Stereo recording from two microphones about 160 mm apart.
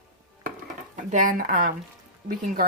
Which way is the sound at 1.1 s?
55° right (ahead or behind).